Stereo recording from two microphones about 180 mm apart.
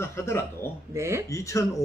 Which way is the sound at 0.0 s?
15° left (ahead or behind).